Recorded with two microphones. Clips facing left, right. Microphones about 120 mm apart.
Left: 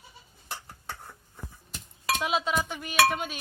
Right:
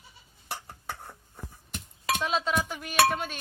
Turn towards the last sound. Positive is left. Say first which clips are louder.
# even
turn(degrees=5)  # may be behind; listen again after turning